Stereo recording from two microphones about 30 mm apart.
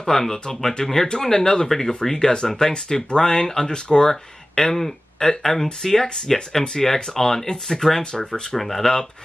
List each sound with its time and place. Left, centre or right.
0.0 s speech: centre
8.0 s speech: left
8.5 s speech: centre